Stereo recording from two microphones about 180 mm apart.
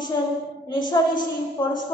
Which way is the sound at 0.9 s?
25° left (ahead or behind).